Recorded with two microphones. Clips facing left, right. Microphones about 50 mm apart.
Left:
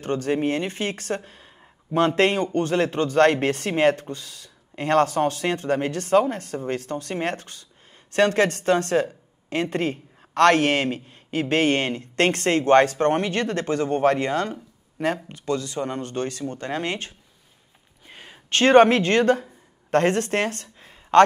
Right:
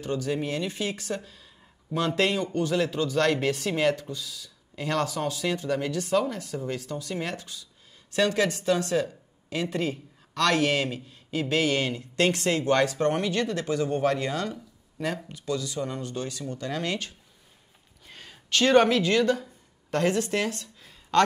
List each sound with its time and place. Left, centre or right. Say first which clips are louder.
0.0 s speech: left 5 dB; left
18.0 s a sound: left 3 dB; left
18.5 s speech: left 5 dB; left